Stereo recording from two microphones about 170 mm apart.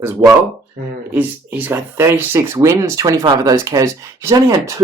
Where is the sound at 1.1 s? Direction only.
10° right (ahead or behind).